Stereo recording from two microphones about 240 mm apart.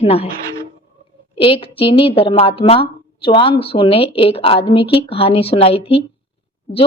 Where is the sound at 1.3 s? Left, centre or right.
Left.